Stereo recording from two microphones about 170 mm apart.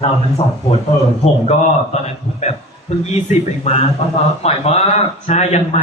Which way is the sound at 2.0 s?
40° left (ahead or behind).